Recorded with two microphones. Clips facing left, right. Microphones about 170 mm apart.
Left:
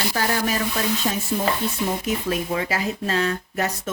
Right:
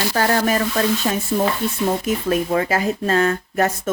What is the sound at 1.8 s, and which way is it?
Speech, 50° right (ahead or behind).